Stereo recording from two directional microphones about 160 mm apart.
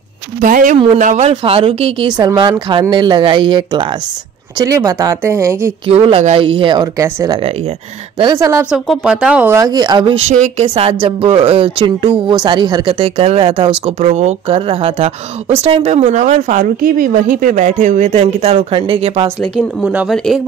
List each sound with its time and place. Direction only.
0.4 s speech: 55° right (ahead or behind)
1.3 s speech: 35° right (ahead or behind); by 5.7 s 15° right (ahead or behind)
5.9 s speech: 35° right (ahead or behind); by 7.3 s 20° right (ahead or behind)
8.4 s speech: 15° right (ahead or behind)
8.6 s speech: centre (ahead or behind)
9.6 s speech: 25° right (ahead or behind); by 10.7 s 45° right (ahead or behind)
10.7 s speech: 35° right (ahead or behind)
19.4 s speech: centre (ahead or behind)